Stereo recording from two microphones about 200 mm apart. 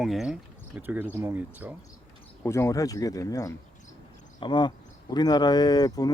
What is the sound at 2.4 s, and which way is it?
Speech, 15° left (ahead or behind).